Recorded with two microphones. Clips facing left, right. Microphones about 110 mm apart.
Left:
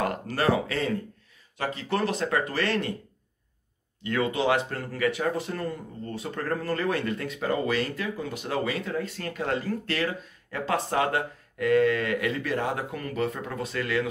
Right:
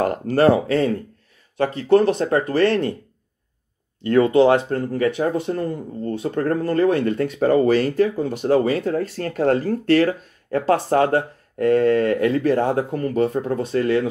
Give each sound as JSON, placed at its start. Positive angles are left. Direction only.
{"t": 0.4, "sound": "speech", "side_deg": -35}
{"t": 4.0, "sound": "speech", "side_deg": -40}